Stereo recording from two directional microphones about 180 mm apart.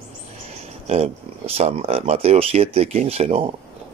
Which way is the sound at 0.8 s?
35° right (ahead or behind).